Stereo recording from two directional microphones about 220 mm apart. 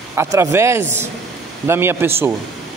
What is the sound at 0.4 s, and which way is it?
A man's voice, 10° right (ahead or behind).